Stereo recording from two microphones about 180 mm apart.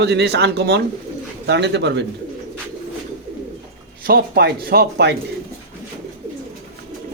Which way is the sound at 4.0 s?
60° right (ahead or behind).